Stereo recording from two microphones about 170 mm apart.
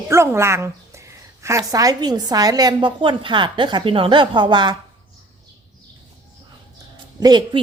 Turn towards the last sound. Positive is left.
turn(degrees=-25)  # may be behind; listen again after turning